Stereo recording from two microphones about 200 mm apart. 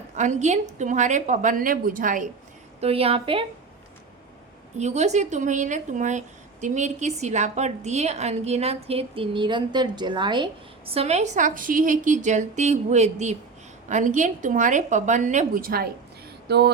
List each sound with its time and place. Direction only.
0.2 s speech: 35° right (ahead or behind)
2.8 s a woman's voice: 30° right (ahead or behind)
4.8 s speech: 35° right (ahead or behind)
16.5 s a sound: 55° right (ahead or behind)